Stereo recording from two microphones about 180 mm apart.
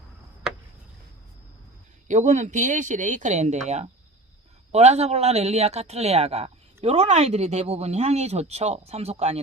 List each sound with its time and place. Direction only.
2.0 s speech: 40° right (ahead or behind)